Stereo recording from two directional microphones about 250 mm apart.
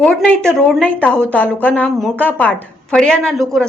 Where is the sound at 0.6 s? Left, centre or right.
Centre.